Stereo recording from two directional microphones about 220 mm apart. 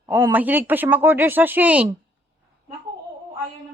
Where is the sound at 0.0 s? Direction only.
10° right (ahead or behind).